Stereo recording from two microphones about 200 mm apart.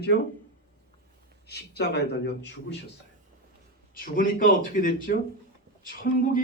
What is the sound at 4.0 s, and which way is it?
Speech, 45° left (ahead or behind).